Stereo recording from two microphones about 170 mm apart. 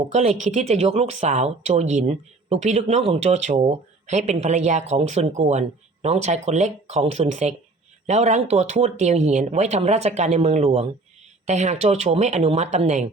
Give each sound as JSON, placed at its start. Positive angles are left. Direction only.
{"t": 0.1, "sound": "speech", "side_deg": -40}